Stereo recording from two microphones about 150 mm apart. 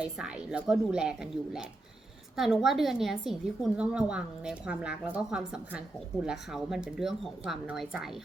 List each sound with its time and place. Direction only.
0.0 s a woman's voice: 5° right (ahead or behind)